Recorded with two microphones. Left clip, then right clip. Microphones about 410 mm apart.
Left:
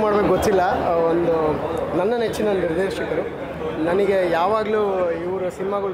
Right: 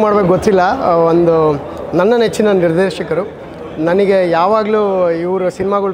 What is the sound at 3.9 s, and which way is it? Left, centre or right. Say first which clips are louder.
Speech: right 8 dB; right.